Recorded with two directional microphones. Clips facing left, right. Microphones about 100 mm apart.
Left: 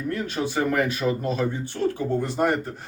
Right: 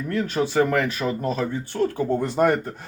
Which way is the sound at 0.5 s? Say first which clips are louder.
Right 2 dB; 40° right (ahead or behind).